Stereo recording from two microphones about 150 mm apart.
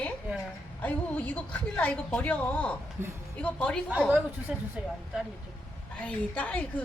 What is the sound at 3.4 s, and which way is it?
Speech, 5° left (ahead or behind).